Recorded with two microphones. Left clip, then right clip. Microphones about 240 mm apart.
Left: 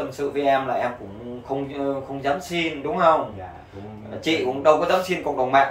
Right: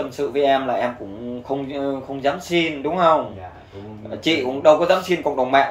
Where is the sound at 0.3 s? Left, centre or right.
Right.